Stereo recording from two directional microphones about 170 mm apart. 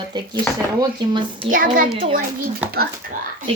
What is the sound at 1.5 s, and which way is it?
Speech, 55° right (ahead or behind).